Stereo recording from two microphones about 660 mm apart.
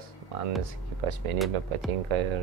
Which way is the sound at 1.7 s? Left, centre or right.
Right.